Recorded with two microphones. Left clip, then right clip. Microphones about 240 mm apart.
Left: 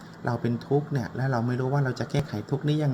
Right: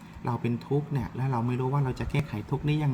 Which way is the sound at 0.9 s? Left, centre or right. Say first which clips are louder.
Left 3 dB; right.